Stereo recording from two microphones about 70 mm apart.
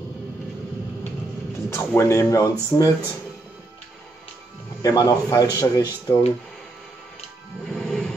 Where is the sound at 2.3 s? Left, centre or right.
Left.